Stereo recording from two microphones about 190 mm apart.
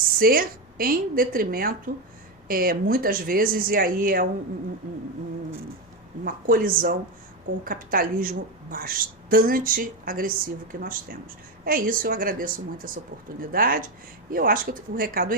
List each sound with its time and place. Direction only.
0.2 s a woman's voice: 50° right (ahead or behind)
6.2 s a woman's voice: 50° right (ahead or behind)